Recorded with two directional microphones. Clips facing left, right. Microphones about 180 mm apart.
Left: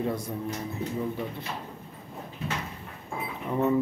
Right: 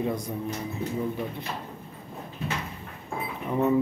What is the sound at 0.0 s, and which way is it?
Speech, 15° right (ahead or behind).